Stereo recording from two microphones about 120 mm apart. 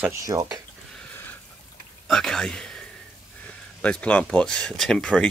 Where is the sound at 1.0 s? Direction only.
15° left (ahead or behind).